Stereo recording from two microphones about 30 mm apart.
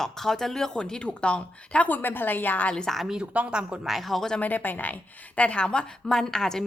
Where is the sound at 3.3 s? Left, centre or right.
Right.